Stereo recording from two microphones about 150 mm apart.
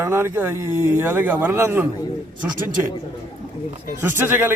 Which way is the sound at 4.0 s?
15° right (ahead or behind).